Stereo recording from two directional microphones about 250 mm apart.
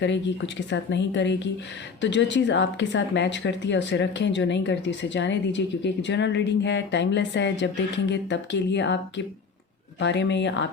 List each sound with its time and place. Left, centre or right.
0.0 s speech: left